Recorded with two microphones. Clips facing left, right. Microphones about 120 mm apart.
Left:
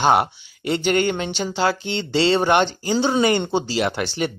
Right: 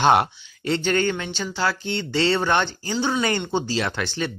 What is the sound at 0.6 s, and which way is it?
Speech, 15° left (ahead or behind).